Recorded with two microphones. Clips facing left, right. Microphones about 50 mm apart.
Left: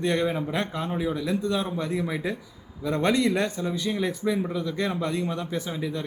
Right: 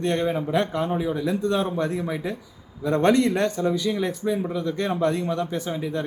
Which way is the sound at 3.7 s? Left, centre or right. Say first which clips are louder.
Right 4 dB; centre.